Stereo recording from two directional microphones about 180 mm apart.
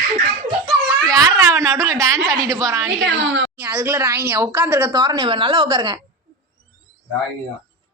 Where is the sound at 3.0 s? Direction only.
90° right.